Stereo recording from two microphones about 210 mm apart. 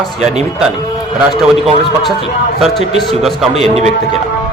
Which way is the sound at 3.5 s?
30° right (ahead or behind).